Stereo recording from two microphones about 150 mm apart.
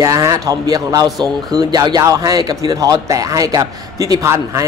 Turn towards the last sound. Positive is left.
turn(degrees=-20)  # may be behind; listen again after turning